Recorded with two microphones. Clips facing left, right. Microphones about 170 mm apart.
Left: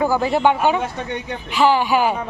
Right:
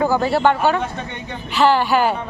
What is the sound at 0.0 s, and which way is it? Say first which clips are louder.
A man's voice: even; 15° left (ahead or behind).